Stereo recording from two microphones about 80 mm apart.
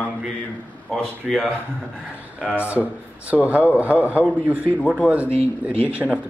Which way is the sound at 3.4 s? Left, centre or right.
Centre.